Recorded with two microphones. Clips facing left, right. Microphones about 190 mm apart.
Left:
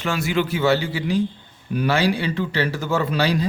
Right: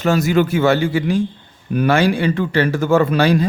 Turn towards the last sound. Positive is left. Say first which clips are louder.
# right 7 dB
turn(degrees=-50)  # may be behind; listen again after turning